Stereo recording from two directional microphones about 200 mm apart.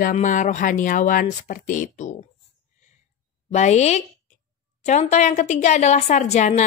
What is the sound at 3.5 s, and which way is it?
A woman's voice, 35° left (ahead or behind).